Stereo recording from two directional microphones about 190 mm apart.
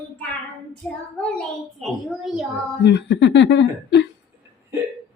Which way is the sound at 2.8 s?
70° left (ahead or behind).